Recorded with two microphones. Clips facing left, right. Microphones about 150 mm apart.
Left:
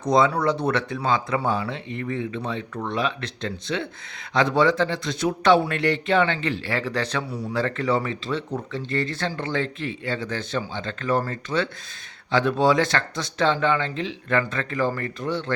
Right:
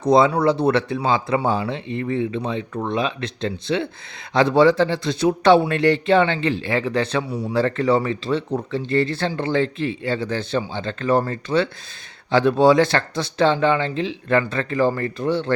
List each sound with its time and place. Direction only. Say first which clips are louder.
0.0 s a man's voice: right 4 dB; 30° right (ahead or behind)